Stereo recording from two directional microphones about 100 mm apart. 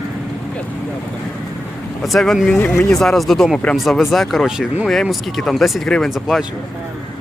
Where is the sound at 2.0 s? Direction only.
5° left (ahead or behind).